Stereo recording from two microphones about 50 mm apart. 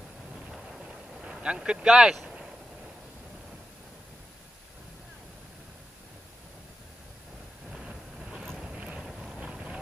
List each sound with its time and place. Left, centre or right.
0.5 s vehicle: centre
1.1 s a sound: centre
1.6 s speech: centre
7.7 s vehicle: centre
8.7 s boat: right
9.0 s boat: centre
9.4 s vehicle: centre